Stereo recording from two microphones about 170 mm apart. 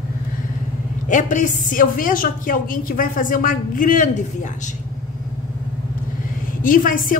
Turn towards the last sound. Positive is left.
turn(degrees=55)  # may be behind; listen again after turning